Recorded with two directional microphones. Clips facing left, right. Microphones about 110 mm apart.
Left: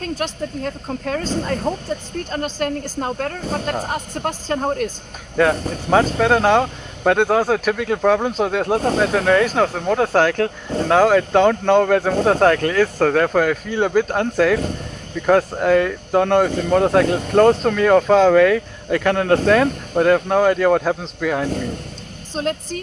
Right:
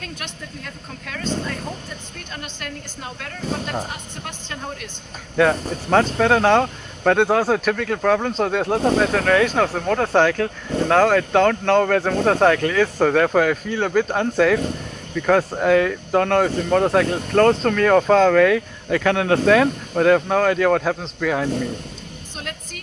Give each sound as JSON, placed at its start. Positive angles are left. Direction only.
{"t": 0.0, "sound": "a woman's voice", "side_deg": 35}
{"t": 5.4, "sound": "speech", "side_deg": 5}
{"t": 22.3, "sound": "speech", "side_deg": 35}